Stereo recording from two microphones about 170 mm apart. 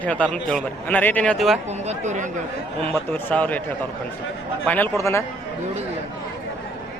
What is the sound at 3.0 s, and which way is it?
Speech, 10° left (ahead or behind).